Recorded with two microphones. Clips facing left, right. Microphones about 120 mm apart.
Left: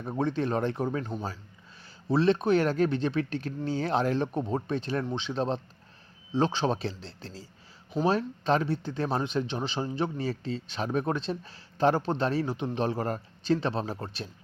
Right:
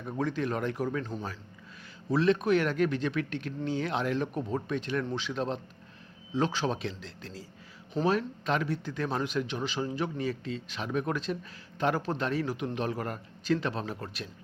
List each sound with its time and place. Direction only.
0.0 s speech: 30° left (ahead or behind)